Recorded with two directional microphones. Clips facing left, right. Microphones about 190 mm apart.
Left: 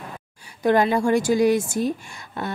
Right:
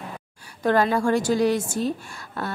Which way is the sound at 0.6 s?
15° left (ahead or behind).